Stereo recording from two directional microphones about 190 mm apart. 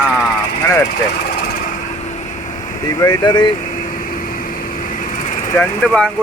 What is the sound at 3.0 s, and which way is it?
Speech, 20° left (ahead or behind).